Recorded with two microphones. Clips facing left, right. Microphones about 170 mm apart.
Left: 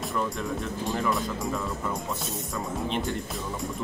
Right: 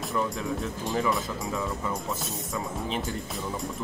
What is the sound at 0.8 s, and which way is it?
Speech, centre (ahead or behind).